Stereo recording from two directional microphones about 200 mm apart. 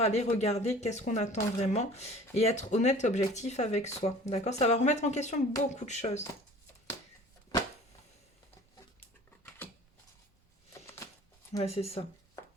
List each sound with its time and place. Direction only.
0.0 s speech: 35° left (ahead or behind)
11.6 s speech: 30° left (ahead or behind)